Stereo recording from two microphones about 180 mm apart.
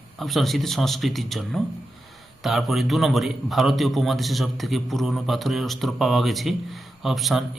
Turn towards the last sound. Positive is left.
turn(degrees=0)  # may be behind; listen again after turning